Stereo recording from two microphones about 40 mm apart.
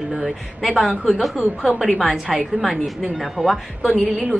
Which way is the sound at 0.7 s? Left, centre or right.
Centre.